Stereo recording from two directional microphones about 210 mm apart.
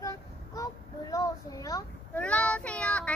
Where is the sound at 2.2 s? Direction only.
5° left (ahead or behind).